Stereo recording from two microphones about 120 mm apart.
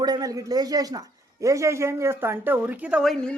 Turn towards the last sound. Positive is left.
turn(degrees=-5)  # may be behind; listen again after turning